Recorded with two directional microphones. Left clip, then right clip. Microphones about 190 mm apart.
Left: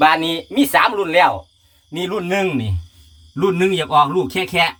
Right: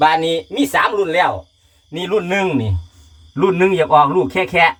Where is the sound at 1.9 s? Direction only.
30° left (ahead or behind).